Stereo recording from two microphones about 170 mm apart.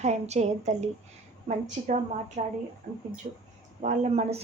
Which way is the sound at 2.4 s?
50° right (ahead or behind).